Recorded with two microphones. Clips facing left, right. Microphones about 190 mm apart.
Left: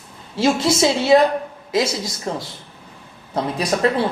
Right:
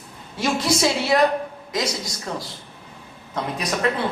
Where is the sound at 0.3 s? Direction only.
25° left (ahead or behind).